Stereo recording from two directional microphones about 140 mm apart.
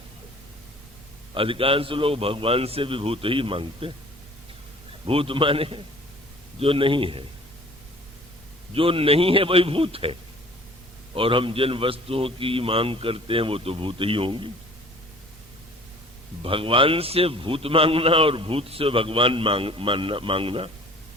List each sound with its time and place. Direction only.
1.3 s a man's voice: 40° right (ahead or behind)
5.0 s a man's voice: 40° right (ahead or behind)
8.7 s a man's voice: 40° right (ahead or behind)
16.4 s a man's voice: 40° right (ahead or behind)